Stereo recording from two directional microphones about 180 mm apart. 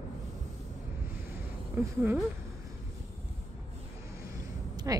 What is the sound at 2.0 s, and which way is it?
Speech, 10° right (ahead or behind).